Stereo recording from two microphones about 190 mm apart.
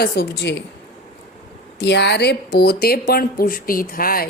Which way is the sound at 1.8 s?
65° left (ahead or behind).